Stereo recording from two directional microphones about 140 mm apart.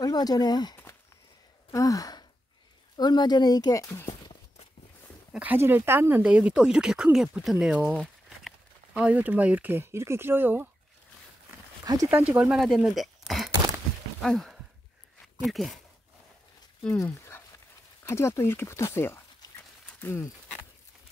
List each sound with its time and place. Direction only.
0.0 s speech: 30° left (ahead or behind)
1.7 s sigh: 25° left (ahead or behind)
3.0 s speech: 30° left (ahead or behind)
5.3 s speech: 10° right (ahead or behind)
11.8 s speech: 25° right (ahead or behind)
12.1 s speech: 10° right (ahead or behind)
14.2 s a sound: centre (ahead or behind)
15.4 s speech: centre (ahead or behind)
17.0 s a sound: 20° left (ahead or behind)
18.0 s speech: 20° left (ahead or behind)
19.9 s a sound: 15° left (ahead or behind)